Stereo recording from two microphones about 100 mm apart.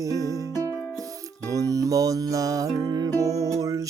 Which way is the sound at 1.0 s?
35° right (ahead or behind).